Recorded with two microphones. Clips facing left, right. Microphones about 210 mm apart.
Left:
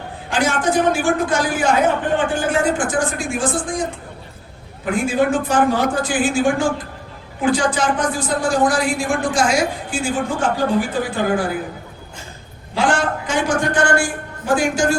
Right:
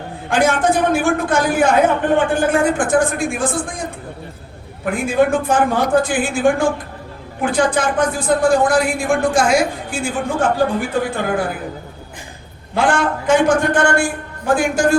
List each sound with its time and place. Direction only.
0.3 s a man's voice: 55° right (ahead or behind)
4.9 s a man's voice: 55° right (ahead or behind)
12.7 s a man's voice: 55° right (ahead or behind)